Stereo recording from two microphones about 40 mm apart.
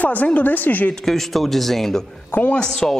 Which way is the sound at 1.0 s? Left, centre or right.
Centre.